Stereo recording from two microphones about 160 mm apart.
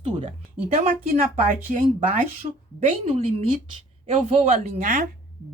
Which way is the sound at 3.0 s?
40° right (ahead or behind).